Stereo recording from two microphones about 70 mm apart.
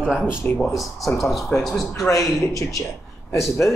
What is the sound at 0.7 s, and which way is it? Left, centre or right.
Speech, centre.